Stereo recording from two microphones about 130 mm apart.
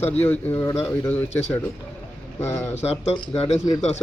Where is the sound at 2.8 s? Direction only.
55° left (ahead or behind).